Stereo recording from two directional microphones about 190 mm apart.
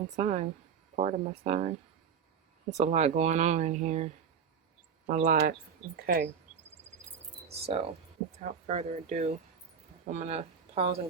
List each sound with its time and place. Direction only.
0.2 s speech: 35° right (ahead or behind); by 6.3 s 55° right (ahead or behind)
7.4 s cricket: 35° right (ahead or behind)
8.4 s speech: 40° right (ahead or behind)